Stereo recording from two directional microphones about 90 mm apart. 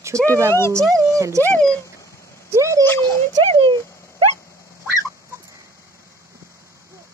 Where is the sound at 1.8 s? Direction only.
35° left (ahead or behind).